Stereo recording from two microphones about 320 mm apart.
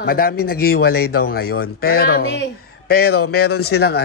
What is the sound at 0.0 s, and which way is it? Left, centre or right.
A man's voice, left.